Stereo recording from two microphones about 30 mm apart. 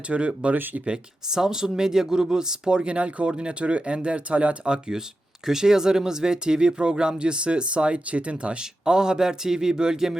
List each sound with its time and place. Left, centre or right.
0.1 s speech: right
1.3 s speech: centre
2.8 s speech: right
4.7 s speech: right
8.8 s speech: right